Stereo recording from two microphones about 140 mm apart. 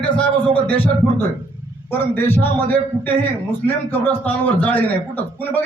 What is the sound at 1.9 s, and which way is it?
A man's voice, 15° left (ahead or behind).